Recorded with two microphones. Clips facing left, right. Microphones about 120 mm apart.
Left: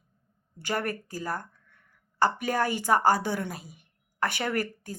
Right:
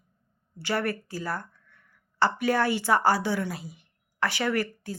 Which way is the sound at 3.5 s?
50° left (ahead or behind).